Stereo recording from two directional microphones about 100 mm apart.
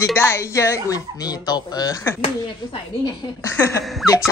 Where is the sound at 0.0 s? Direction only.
25° left (ahead or behind); by 2.0 s 40° left (ahead or behind).